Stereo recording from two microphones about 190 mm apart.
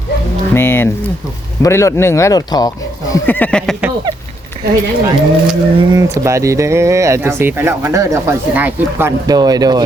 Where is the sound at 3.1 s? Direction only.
10° left (ahead or behind).